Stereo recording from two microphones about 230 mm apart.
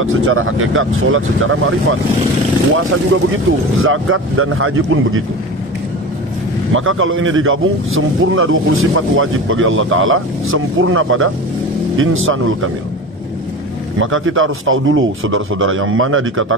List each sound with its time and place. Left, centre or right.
0.0 s speech: right
6.7 s speech: right
13.9 s speech: right